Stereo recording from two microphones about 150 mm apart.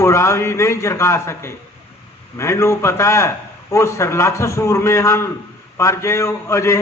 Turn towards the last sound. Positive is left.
turn(degrees=20)  # may be behind; listen again after turning